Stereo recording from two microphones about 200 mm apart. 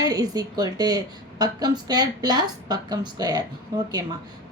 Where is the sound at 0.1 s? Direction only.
20° right (ahead or behind).